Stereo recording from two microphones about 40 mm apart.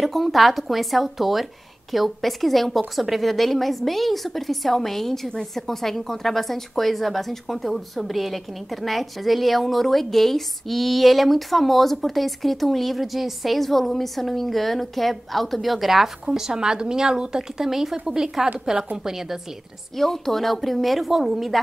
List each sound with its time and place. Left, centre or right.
0.0 s a woman's voice: centre
16.3 s speech: centre
20.0 s a woman's voice: centre